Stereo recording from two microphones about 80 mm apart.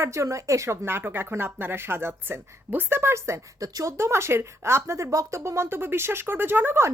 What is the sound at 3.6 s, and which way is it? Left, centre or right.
A woman's voice, right.